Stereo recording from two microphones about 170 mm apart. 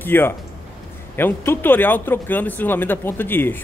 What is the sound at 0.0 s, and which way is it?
A man's voice, 10° left (ahead or behind).